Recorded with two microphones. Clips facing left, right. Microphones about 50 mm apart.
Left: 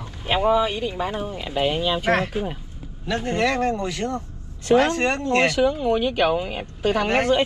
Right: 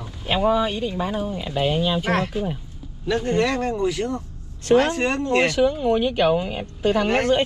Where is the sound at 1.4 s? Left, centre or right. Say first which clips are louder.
Left 1 dB; left.